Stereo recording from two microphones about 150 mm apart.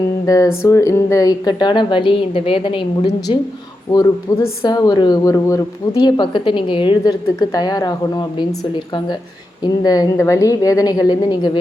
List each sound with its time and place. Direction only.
0.3 s speech: 20° left (ahead or behind)
4.3 s speech: 20° left (ahead or behind)
9.6 s speech: 25° left (ahead or behind)